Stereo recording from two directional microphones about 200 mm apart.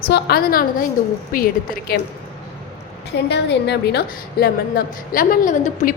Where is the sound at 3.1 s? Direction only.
60° left (ahead or behind).